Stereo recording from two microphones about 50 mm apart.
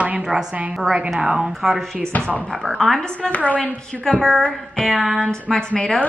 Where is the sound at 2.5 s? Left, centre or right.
Centre.